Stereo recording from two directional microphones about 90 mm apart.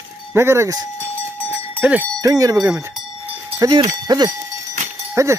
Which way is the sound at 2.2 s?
45° right (ahead or behind).